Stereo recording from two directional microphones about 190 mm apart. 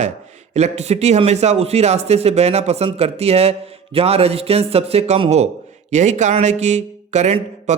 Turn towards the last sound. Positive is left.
turn(degrees=-35)  # may be behind; listen again after turning